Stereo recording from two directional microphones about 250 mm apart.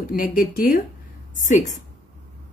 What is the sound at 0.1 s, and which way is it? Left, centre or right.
A woman's voice, left.